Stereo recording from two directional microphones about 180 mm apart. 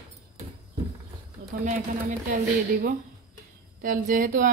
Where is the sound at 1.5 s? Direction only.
45° right (ahead or behind).